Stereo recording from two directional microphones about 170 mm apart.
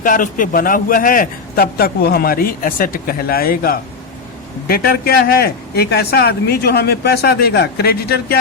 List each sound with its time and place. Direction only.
0.0 s a man's voice: 50° left (ahead or behind)